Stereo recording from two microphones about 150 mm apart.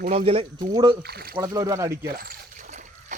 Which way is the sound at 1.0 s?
90° right.